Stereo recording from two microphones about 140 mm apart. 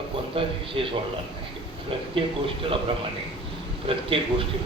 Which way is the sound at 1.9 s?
40° right (ahead or behind).